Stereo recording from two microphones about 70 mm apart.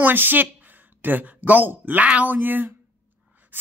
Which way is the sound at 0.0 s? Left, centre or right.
Right.